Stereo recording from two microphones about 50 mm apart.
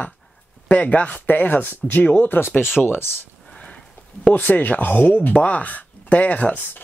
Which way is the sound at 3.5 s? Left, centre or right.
Left.